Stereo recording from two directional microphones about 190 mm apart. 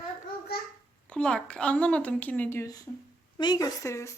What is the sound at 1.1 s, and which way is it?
A woman's voice, 5° left (ahead or behind).